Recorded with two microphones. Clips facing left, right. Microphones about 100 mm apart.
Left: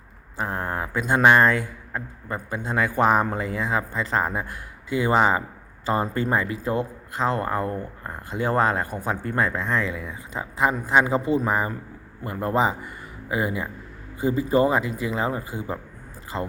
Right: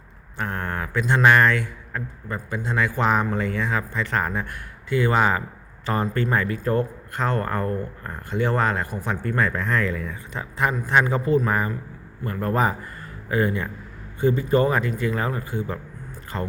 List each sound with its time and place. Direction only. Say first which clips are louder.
0.3 s a sound: left 1 dB; 30° left (ahead or behind)
0.9 s speech: even; 15° left (ahead or behind)
1.5 s speech: even; 35° left (ahead or behind)
7.4 s speech: even; 15° left (ahead or behind)
8.3 s speech: left 1 dB; 35° left (ahead or behind); by 13.7 s 10° left (ahead or behind)
14.6 s speech: even; 25° left (ahead or behind)
16.3 s speech: even; centre (ahead or behind)